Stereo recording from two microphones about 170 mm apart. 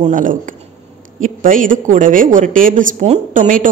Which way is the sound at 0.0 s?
50° right (ahead or behind).